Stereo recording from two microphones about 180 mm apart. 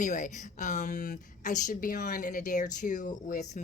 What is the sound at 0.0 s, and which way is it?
A woman's voice, 45° left (ahead or behind).